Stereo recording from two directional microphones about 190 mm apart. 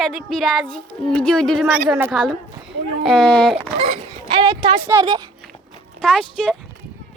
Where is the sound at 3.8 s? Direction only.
30° right (ahead or behind).